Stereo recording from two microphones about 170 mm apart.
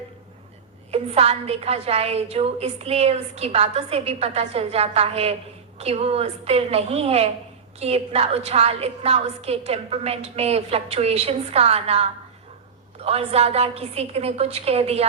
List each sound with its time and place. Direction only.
0.9 s a woman's voice: 35° right (ahead or behind)